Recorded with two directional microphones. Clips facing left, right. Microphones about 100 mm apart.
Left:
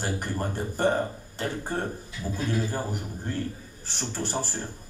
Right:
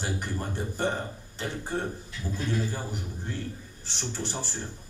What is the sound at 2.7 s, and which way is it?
Speech, 45° left (ahead or behind).